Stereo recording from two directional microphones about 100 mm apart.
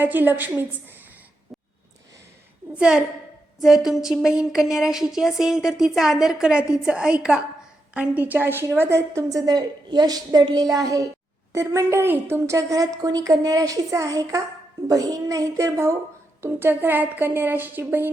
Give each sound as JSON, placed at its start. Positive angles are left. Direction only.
{"t": 0.0, "sound": "a woman's voice", "side_deg": -20}
{"t": 2.7, "sound": "a woman's voice", "side_deg": -10}